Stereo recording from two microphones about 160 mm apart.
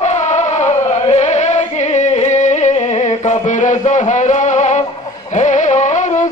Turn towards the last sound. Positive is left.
turn(degrees=50)  # may be behind; listen again after turning